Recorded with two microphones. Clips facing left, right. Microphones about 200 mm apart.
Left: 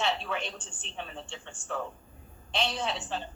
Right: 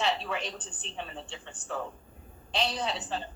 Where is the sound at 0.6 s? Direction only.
35° right (ahead or behind).